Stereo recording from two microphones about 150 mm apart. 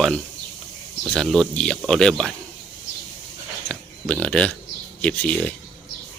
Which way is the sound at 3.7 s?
5° left (ahead or behind).